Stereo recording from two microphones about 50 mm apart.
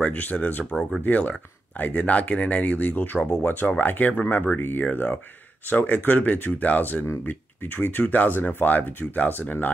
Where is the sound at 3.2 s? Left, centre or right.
Left.